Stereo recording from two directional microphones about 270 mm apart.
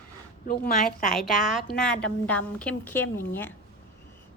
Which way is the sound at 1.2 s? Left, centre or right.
Centre.